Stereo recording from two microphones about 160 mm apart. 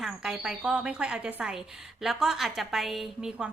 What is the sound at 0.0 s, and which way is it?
A woman's voice, centre (ahead or behind).